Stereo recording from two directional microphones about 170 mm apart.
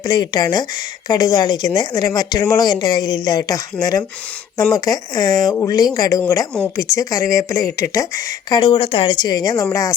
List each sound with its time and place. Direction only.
0.0 s speech: 25° left (ahead or behind)